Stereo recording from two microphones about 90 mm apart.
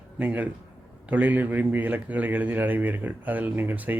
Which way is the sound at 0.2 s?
20° right (ahead or behind).